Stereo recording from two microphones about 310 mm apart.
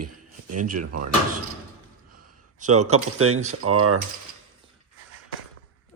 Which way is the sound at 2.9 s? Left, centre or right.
Right.